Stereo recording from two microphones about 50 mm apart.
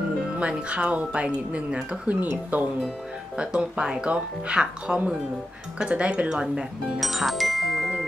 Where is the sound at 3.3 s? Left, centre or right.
Centre.